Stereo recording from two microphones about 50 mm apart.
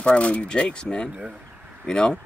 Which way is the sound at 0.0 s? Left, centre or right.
Left.